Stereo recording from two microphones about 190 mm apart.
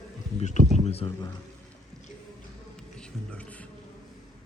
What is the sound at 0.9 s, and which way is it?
Speech, 30° left (ahead or behind).